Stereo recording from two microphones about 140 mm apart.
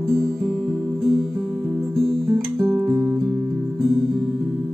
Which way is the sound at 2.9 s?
15° right (ahead or behind).